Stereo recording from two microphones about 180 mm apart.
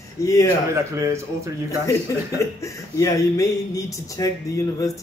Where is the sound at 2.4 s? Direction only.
15° left (ahead or behind).